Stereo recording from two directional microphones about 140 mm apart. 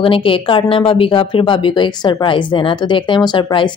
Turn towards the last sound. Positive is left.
turn(degrees=35)  # may be behind; listen again after turning